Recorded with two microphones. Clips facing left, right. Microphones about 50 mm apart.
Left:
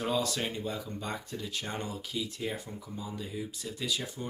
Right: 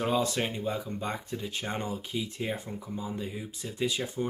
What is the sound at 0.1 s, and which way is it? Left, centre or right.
Speech, right.